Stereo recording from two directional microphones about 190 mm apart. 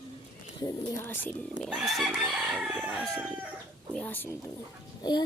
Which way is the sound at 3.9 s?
5° left (ahead or behind).